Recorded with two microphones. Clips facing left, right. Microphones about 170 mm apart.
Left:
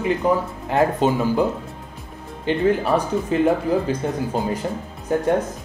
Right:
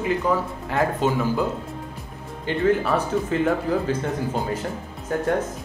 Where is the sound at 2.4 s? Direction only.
20° left (ahead or behind).